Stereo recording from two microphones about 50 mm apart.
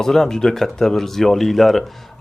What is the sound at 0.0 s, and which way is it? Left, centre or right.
Speech, centre.